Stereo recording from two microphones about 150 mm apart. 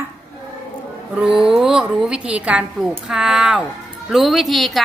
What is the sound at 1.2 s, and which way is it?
A woman's voice, 5° right (ahead or behind).